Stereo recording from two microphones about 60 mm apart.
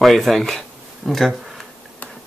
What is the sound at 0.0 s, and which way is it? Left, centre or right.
Speech, centre.